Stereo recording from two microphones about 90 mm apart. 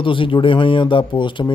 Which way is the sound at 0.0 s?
70° left (ahead or behind).